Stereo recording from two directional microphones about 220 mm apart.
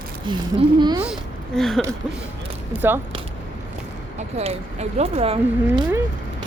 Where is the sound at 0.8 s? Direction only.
20° right (ahead or behind).